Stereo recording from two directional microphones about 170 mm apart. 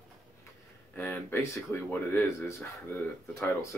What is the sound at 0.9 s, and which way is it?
Speech, 10° left (ahead or behind).